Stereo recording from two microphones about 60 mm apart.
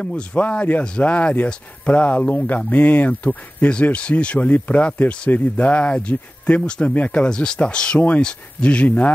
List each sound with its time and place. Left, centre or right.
0.0 s speech: centre
7.2 s speech: centre